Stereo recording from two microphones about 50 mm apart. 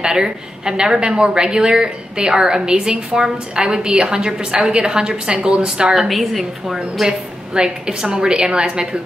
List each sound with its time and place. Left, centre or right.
0.0 s a woman's voice: centre
5.9 s a woman's voice: centre
7.0 s a woman's voice: centre